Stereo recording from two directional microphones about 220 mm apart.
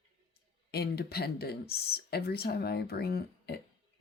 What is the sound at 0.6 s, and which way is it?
Speech, 45° left (ahead or behind).